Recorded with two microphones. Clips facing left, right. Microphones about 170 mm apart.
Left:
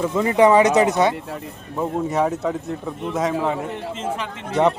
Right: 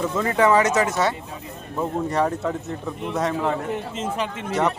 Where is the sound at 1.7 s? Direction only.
5° left (ahead or behind).